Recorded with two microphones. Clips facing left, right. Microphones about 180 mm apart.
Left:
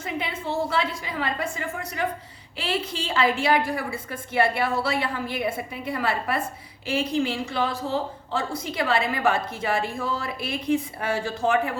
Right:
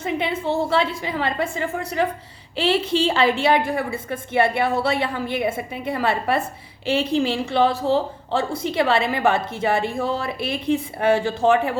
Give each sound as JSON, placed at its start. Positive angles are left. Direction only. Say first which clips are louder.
{"t": 0.0, "sound": "a woman's voice", "louder": "right 6 dB", "side_deg": -25}